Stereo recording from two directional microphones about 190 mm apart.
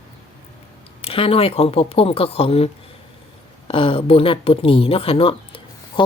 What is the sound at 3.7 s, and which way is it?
Speech, 30° left (ahead or behind).